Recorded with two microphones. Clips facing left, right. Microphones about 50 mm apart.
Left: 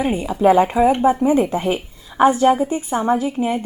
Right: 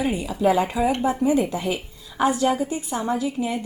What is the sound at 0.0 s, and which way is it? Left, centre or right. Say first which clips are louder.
A woman's voice: left 5 dB; left.